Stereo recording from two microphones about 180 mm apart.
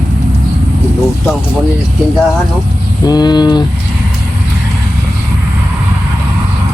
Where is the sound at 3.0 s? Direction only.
20° left (ahead or behind).